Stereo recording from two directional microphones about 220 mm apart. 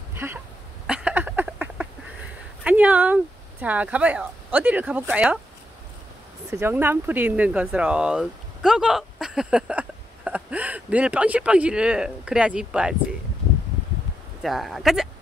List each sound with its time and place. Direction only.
0.1 s cough: 10° right (ahead or behind)
0.8 s a sound: 5° right (ahead or behind)
2.6 s speech: 5° right (ahead or behind)
6.5 s speech: 10° right (ahead or behind)
14.4 s speech: centre (ahead or behind)